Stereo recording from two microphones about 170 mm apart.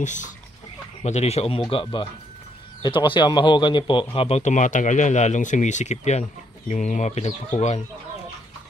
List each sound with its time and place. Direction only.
0.0 s a man's voice: 45° left (ahead or behind)